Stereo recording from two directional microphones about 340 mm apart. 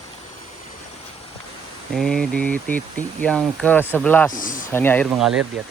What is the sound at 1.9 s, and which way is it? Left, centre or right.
Speech, centre.